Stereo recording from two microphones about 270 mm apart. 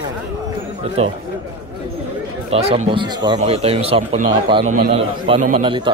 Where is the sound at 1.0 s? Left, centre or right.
Right.